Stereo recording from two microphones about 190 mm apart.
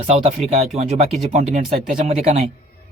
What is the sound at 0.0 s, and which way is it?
Speech, 35° right (ahead or behind).